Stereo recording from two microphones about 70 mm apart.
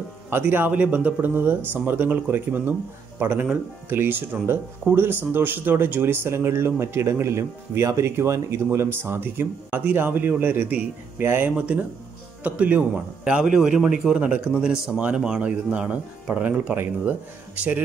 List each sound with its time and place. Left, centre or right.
0.3 s speech: right
11.5 s speech: centre